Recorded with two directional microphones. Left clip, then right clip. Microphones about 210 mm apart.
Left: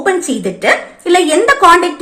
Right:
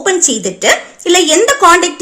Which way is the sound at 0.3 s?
50° right (ahead or behind).